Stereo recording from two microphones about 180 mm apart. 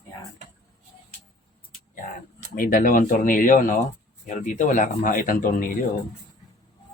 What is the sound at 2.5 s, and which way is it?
Speech, 50° left (ahead or behind).